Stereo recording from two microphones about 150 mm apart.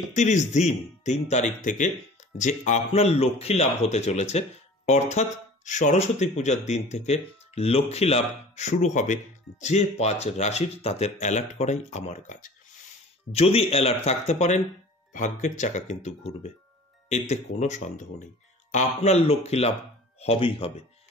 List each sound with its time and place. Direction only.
0.1 s speech: 55° left (ahead or behind)
13.3 s speech: 40° left (ahead or behind)